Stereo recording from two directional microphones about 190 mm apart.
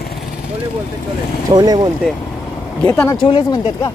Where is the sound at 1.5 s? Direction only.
20° right (ahead or behind).